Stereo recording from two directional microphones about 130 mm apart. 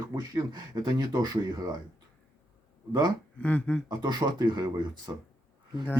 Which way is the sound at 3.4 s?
10° left (ahead or behind).